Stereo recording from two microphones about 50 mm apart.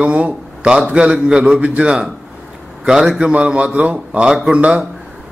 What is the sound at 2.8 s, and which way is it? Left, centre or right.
A man's voice, centre.